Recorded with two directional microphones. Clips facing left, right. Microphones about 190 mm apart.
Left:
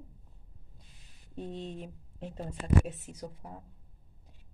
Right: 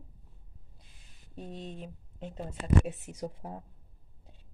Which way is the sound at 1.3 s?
Centre (ahead or behind).